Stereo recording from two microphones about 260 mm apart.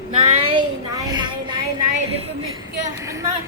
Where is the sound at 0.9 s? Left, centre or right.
Centre.